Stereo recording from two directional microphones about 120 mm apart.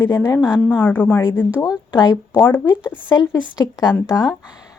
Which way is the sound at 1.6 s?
35° left (ahead or behind).